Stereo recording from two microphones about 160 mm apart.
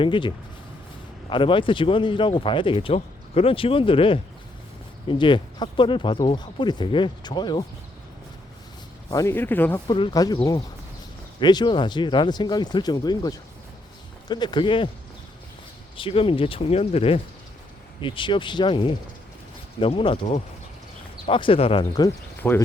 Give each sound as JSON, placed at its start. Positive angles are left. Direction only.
{"t": 0.0, "sound": "speech", "side_deg": 30}
{"t": 9.0, "sound": "speech", "side_deg": 20}
{"t": 9.8, "sound": "speech", "side_deg": 30}
{"t": 16.0, "sound": "speech", "side_deg": 35}
{"t": 22.4, "sound": "speech", "side_deg": 10}